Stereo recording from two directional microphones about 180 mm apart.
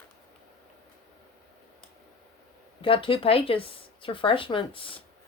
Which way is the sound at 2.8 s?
30° left (ahead or behind).